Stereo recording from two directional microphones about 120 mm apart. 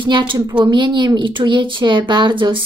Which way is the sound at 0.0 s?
40° right (ahead or behind).